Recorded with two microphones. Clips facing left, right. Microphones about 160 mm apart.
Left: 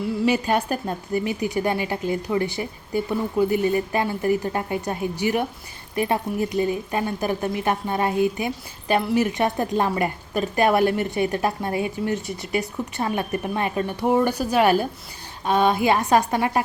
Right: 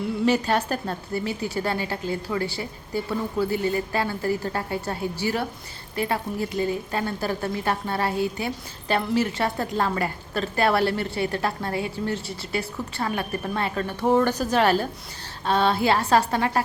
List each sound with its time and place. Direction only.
0.3 s a woman's voice: 10° left (ahead or behind)